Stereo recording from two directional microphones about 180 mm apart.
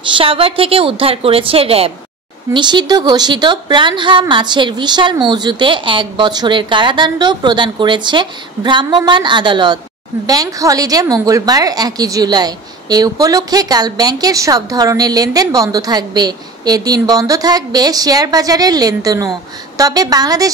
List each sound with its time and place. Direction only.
0.0 s a woman's voice: 30° right (ahead or behind)